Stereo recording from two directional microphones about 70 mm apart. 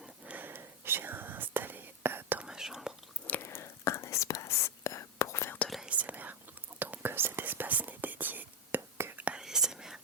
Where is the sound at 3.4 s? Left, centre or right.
Left.